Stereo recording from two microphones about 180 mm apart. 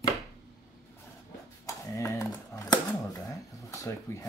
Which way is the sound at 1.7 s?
15° left (ahead or behind).